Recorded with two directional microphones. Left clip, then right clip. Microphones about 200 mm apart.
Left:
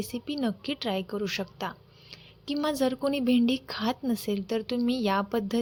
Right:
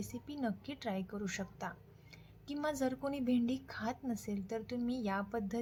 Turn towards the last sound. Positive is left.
turn(degrees=35)  # may be behind; listen again after turning